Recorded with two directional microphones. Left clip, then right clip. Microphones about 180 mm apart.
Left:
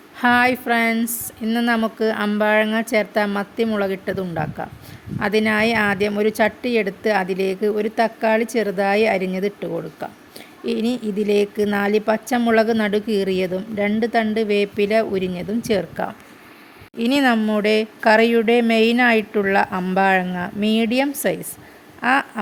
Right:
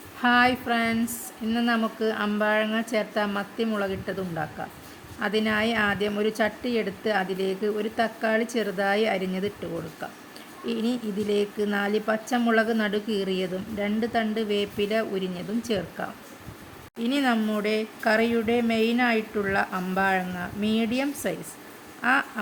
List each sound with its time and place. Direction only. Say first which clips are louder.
0.2 s a woman's voice: left 5 dB; 45° left (ahead or behind)